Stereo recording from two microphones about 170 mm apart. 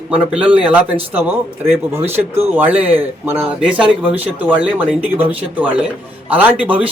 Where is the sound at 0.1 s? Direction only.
10° right (ahead or behind).